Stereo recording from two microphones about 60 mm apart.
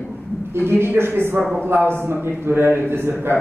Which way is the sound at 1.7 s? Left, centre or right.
Right.